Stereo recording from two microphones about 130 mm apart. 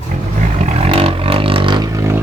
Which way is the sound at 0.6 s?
50° right (ahead or behind).